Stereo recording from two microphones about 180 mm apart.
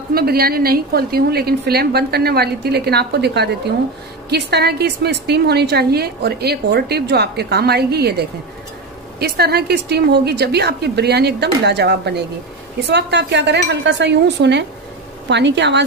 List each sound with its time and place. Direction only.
0.1 s a woman's voice: 55° right (ahead or behind); by 15.8 s 80° right